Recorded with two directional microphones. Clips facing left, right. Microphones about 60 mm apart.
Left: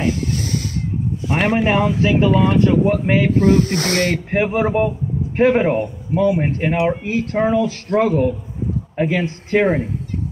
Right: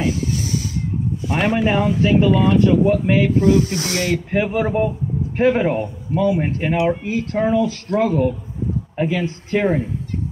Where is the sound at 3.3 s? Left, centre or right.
Left.